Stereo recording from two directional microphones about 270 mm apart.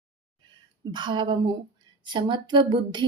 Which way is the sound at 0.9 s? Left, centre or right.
Centre.